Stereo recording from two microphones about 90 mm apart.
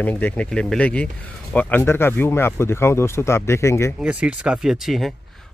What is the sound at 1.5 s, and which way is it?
Speech, 25° left (ahead or behind).